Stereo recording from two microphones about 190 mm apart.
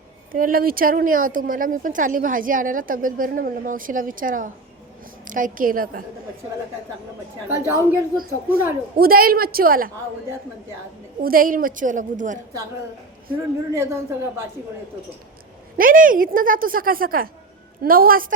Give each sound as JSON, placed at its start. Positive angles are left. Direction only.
{"t": 0.3, "sound": "speech", "side_deg": -50}
{"t": 7.6, "sound": "speech", "side_deg": -15}
{"t": 9.0, "sound": "speech", "side_deg": -50}
{"t": 11.2, "sound": "speech", "side_deg": -50}
{"t": 13.3, "sound": "speech", "side_deg": -15}
{"t": 15.8, "sound": "speech", "side_deg": -45}